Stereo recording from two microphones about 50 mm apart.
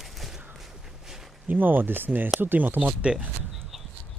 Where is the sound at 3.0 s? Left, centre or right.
Right.